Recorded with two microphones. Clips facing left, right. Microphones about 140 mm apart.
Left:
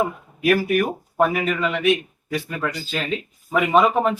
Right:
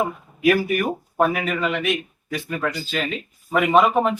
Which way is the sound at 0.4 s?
Centre (ahead or behind).